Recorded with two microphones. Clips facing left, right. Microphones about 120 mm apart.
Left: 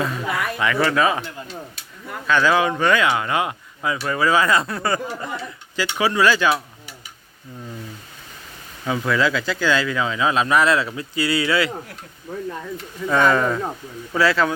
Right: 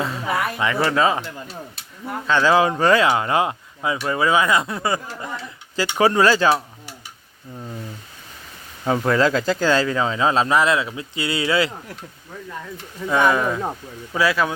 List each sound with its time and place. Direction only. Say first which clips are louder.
0.0 s speech: right 1 dB; 25° right (ahead or behind)
2.2 s speech: right 1 dB; 25° right (ahead or behind)
5.7 s speech: right 3 dB; 35° right (ahead or behind)
8.9 s speech: right 3 dB; 40° right (ahead or behind)
13.1 s speech: left 1 dB; 10° right (ahead or behind)